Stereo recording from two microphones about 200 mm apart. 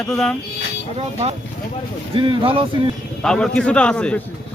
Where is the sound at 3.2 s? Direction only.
5° left (ahead or behind).